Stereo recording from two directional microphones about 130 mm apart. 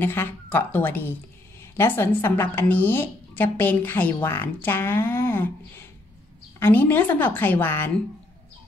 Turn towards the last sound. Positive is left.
turn(degrees=15)  # may be behind; listen again after turning